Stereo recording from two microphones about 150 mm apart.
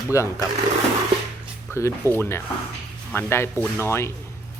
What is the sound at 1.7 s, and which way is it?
Speech, 15° left (ahead or behind).